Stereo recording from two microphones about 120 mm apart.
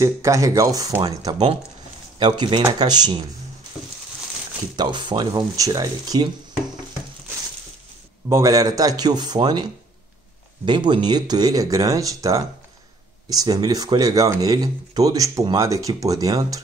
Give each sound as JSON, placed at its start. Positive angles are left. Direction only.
{"t": 0.0, "sound": "speech", "side_deg": -25}
{"t": 2.1, "sound": "speech", "side_deg": -40}
{"t": 4.7, "sound": "speech", "side_deg": -40}
{"t": 8.3, "sound": "speech", "side_deg": -25}